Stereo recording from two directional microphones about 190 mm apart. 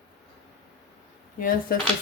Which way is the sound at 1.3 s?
50° left (ahead or behind).